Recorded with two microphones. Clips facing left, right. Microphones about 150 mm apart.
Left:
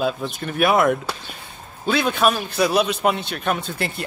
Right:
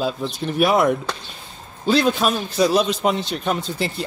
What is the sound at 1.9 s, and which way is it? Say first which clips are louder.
Speech: right 1 dB; 60° left (ahead or behind).